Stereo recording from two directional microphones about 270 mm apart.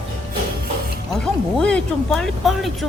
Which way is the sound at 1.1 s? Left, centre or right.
Centre.